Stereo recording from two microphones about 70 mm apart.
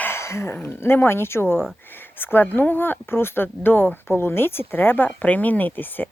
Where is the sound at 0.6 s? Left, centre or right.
Left.